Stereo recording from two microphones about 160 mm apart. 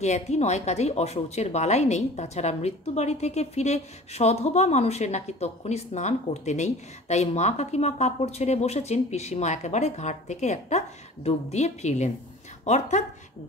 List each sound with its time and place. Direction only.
0.0 s a woman's voice: 45° left (ahead or behind)